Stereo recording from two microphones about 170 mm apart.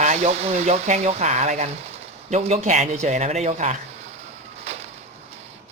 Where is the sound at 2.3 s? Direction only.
40° right (ahead or behind).